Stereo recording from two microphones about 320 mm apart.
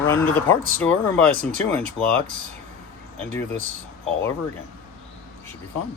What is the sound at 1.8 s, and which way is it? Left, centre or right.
Speech, centre.